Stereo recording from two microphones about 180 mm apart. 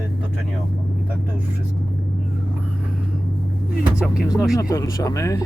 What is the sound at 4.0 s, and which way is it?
Speech, 5° right (ahead or behind).